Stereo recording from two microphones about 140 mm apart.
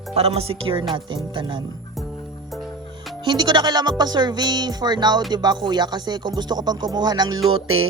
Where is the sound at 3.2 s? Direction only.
30° right (ahead or behind).